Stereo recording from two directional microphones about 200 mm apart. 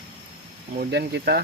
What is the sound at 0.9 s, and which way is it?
Speech, 55° right (ahead or behind).